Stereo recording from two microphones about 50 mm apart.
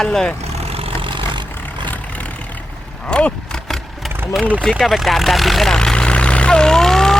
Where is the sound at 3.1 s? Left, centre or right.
Centre.